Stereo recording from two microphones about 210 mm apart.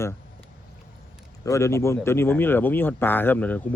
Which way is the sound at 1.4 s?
15° left (ahead or behind).